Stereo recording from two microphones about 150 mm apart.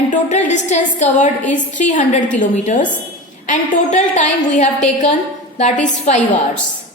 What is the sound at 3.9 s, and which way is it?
A woman's voice, 55° left (ahead or behind).